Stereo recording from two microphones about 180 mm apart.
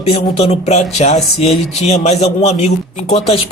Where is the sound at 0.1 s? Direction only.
35° left (ahead or behind).